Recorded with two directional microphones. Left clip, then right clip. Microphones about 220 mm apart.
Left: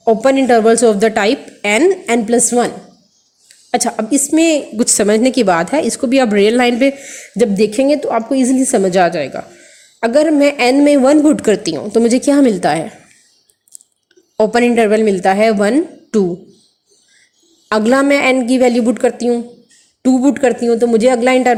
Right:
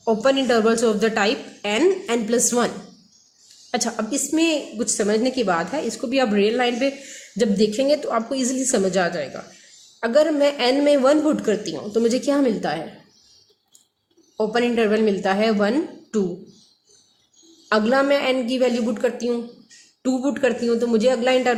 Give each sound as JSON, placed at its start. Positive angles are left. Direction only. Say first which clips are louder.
{"t": 0.0, "sound": "a woman's voice", "louder": "left 7 dB", "side_deg": 25}
{"t": 14.3, "sound": "a woman's voice", "louder": "left 9 dB", "side_deg": 30}
{"t": 17.7, "sound": "a woman's voice", "louder": "left 6 dB", "side_deg": 30}